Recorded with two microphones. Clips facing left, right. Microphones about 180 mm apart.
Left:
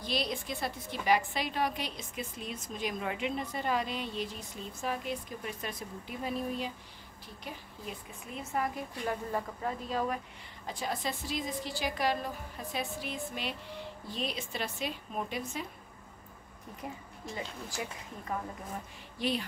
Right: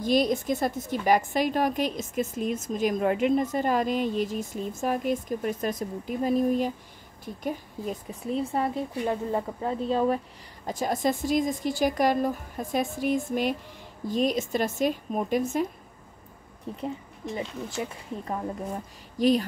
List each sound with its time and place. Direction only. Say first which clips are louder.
0.0 s a woman's voice: right 11 dB; 45° right (ahead or behind); by 10.2 s 30° right (ahead or behind)
10.7 s a woman's voice: right 9 dB; 45° right (ahead or behind)
16.8 s speech: right 8 dB; 25° right (ahead or behind)
19.1 s speech: right 11 dB; 40° right (ahead or behind)